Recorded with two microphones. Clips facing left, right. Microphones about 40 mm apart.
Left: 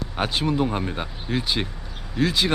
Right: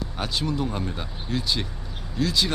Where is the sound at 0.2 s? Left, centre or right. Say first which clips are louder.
Left 5 dB; left.